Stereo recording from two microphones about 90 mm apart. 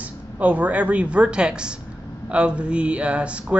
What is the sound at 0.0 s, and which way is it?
A woman's voice, 15° right (ahead or behind).